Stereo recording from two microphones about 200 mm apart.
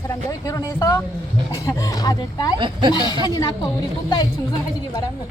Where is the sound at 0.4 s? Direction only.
15° left (ahead or behind).